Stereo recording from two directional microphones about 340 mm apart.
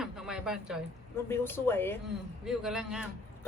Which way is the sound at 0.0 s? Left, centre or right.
Centre.